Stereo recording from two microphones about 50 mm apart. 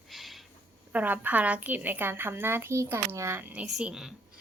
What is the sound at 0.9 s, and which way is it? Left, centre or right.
A woman's voice, right.